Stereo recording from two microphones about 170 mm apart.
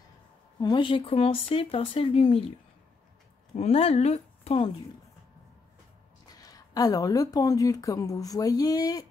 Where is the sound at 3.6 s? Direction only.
40° left (ahead or behind).